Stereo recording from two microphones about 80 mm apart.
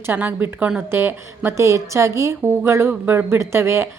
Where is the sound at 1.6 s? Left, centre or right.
Right.